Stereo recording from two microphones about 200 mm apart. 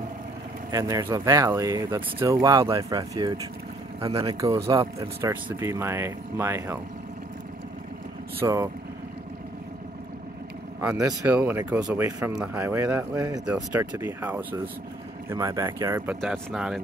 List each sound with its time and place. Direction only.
0.7 s speech: 15° right (ahead or behind)
4.3 s speech: 15° right (ahead or behind)
8.4 s speech: 15° right (ahead or behind)
10.8 s speech: 15° right (ahead or behind)
16.2 s speech: 5° right (ahead or behind)